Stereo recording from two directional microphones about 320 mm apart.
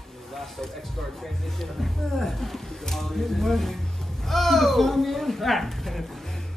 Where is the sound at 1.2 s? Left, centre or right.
Centre.